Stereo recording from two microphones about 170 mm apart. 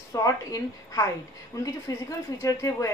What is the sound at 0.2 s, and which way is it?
A woman's voice, 20° left (ahead or behind).